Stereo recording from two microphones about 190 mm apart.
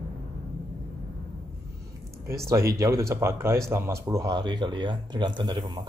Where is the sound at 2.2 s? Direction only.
15° right (ahead or behind).